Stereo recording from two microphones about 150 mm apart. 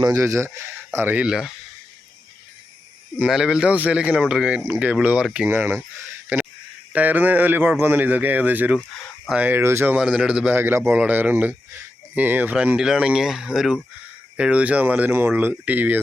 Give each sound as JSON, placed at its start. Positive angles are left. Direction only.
{"t": 0.0, "sound": "speech", "side_deg": -20}
{"t": 3.2, "sound": "speech", "side_deg": -5}
{"t": 6.9, "sound": "speech", "side_deg": -10}